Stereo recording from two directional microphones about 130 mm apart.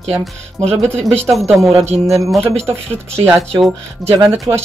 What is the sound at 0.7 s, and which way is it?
Speech, 5° left (ahead or behind).